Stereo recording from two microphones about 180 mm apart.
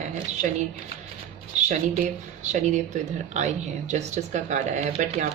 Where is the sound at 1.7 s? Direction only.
40° right (ahead or behind).